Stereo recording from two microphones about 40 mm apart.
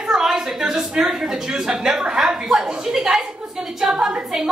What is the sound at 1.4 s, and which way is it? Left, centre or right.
A man's voice, centre.